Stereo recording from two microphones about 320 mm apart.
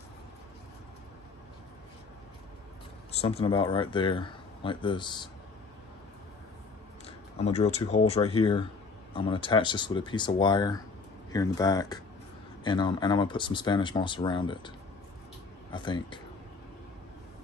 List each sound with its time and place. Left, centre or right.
3.1 s speech: centre
7.1 s speech: centre
15.7 s speech: centre